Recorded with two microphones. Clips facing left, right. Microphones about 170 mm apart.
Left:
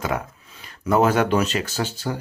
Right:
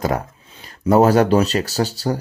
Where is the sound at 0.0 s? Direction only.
40° right (ahead or behind).